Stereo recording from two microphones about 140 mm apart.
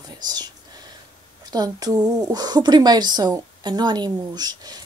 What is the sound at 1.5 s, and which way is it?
A woman's voice, 30° right (ahead or behind).